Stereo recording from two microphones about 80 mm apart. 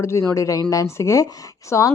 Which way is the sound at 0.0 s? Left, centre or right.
Left.